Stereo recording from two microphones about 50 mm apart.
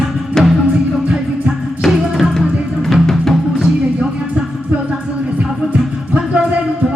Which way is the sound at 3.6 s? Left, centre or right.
Centre.